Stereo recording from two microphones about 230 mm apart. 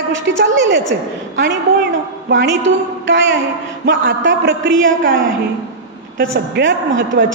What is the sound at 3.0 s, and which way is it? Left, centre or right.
A man's voice, right.